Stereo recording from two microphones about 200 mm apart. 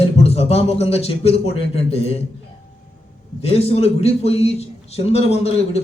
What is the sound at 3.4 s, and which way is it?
A man's voice, 30° left (ahead or behind).